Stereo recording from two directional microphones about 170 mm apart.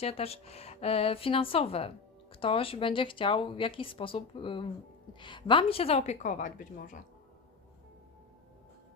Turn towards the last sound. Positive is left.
turn(degrees=55)  # may be behind; listen again after turning